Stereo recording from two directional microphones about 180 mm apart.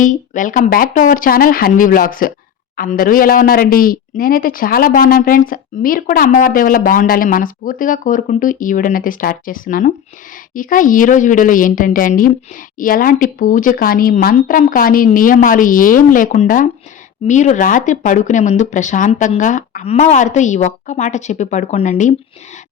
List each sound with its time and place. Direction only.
0.0 s speech: 45° left (ahead or behind)